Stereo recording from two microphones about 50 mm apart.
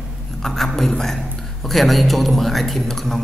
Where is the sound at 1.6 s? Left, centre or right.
Centre.